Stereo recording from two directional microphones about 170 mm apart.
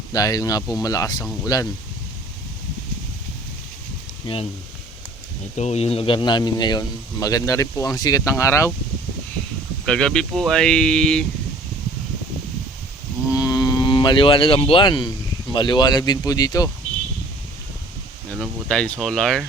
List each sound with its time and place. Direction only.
0.1 s speech: 20° left (ahead or behind)
5.5 s speech: 40° left (ahead or behind); by 8.7 s 15° left (ahead or behind)
9.8 s speech: 5° left (ahead or behind)
13.3 s a sound: 20° left (ahead or behind)
15.5 s speech: 25° left (ahead or behind)
18.3 s speech: 5° left (ahead or behind)